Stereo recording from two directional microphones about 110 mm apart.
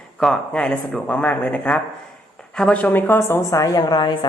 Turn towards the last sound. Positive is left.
turn(degrees=35)  # may be behind; listen again after turning